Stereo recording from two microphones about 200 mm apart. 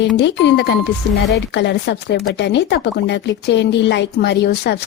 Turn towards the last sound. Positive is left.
turn(degrees=55)  # may be behind; listen again after turning